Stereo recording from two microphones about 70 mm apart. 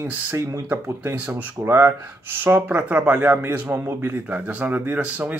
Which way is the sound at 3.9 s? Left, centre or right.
Right.